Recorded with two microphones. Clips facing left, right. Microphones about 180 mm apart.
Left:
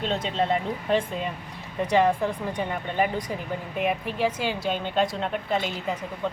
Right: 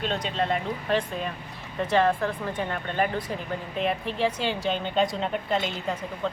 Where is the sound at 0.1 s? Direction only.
25° left (ahead or behind).